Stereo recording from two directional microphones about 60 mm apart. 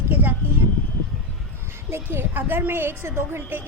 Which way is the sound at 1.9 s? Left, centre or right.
Right.